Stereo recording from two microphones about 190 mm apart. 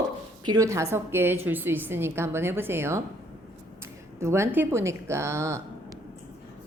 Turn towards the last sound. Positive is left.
turn(degrees=-15)  # may be behind; listen again after turning